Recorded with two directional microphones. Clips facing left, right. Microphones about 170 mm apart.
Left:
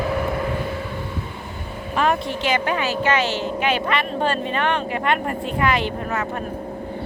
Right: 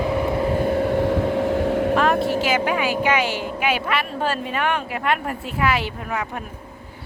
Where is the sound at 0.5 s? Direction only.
50° right (ahead or behind); by 1.9 s 85° right.